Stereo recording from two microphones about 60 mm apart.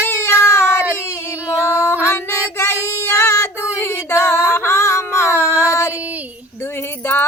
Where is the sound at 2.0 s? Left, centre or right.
Left.